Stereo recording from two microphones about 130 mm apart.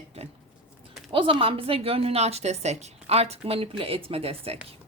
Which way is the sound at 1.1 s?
40° right (ahead or behind).